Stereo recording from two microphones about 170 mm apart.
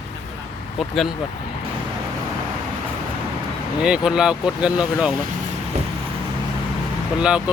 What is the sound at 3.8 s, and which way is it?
Speech, 5° right (ahead or behind).